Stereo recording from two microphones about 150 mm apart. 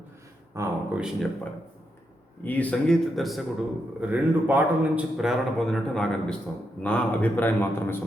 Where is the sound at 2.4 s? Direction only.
10° left (ahead or behind).